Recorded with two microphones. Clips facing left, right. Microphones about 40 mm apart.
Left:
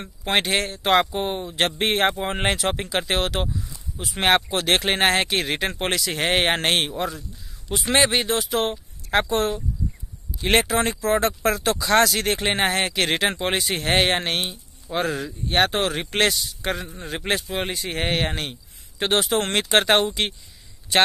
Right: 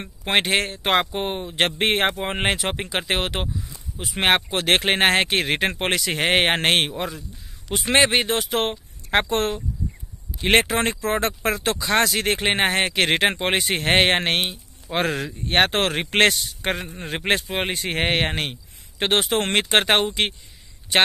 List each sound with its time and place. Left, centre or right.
0.0 s speech: right
15.0 s speech: right